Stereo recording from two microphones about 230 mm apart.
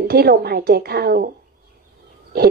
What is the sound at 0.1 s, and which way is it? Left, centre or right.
A woman's voice, right.